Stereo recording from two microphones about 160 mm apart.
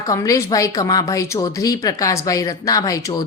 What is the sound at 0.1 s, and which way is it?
A woman's voice, 20° left (ahead or behind).